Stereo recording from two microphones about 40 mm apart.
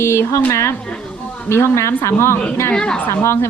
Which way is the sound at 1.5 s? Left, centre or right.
Left.